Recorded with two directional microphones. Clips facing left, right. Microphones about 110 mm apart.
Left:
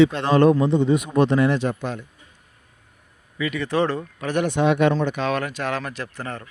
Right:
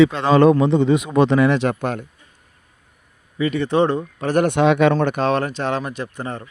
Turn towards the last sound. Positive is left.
turn(degrees=-20)  # may be behind; listen again after turning